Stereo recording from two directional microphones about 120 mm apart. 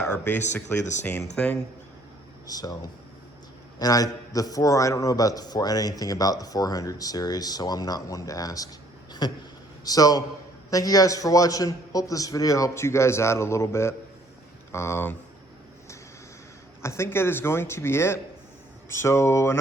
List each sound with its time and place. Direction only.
0.0 s speech: 20° left (ahead or behind)
2.5 s a man's voice: 35° left (ahead or behind)
3.8 s a man's voice: 30° left (ahead or behind)
9.8 s a man's voice: 30° left (ahead or behind)
16.8 s a man's voice: 20° left (ahead or behind)